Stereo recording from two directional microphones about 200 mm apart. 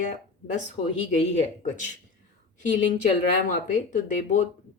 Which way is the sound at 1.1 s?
35° left (ahead or behind).